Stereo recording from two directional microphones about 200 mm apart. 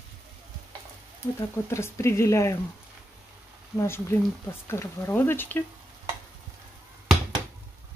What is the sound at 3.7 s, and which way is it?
Speech, 10° left (ahead or behind).